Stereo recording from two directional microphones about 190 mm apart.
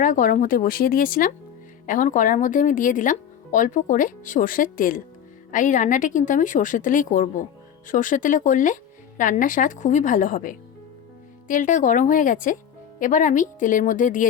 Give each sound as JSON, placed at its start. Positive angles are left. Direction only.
{"t": 0.0, "sound": "speech", "side_deg": 45}